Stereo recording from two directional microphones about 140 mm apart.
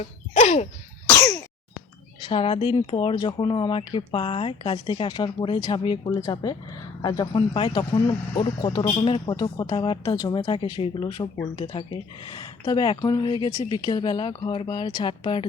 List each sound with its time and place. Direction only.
0.3 s a sound: 50° left (ahead or behind)
1.1 s sneeze: 25° left (ahead or behind)
2.2 s speech: 40° left (ahead or behind)
7.0 s speech: 30° left (ahead or behind)